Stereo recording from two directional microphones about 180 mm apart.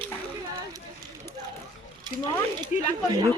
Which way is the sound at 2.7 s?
35° left (ahead or behind).